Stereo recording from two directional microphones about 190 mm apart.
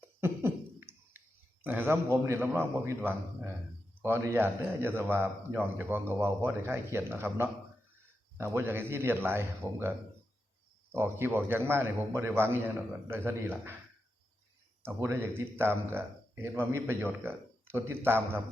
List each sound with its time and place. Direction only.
0.0 s cough: 10° right (ahead or behind)
1.6 s speech: 10° right (ahead or behind)
10.9 s speech: 10° right (ahead or behind)
14.8 s speech: 10° right (ahead or behind)